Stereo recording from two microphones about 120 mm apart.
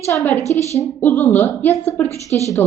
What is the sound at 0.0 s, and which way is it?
A woman's voice, 25° left (ahead or behind).